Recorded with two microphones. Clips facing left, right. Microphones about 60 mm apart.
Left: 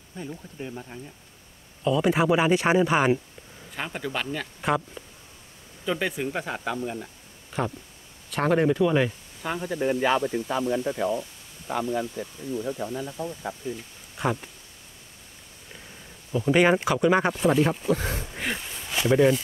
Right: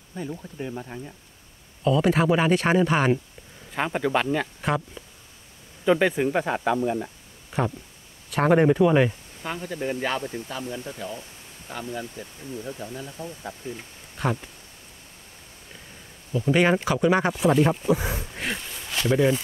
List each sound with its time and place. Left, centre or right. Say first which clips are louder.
0.1 s speech: right 4 dB; centre
1.9 s speech: right 1 dB; centre
3.7 s speech: right 7 dB; centre
4.6 s speech: left 1 dB; centre
5.9 s speech: right 7 dB; centre
8.3 s speech: right 3 dB; centre
8.5 s speech: right 3 dB; centre
9.6 s speech: left 4 dB; centre
13.6 s speech: left 2 dB; right
14.1 s speech: even; centre
16.4 s speech: left 1 dB; centre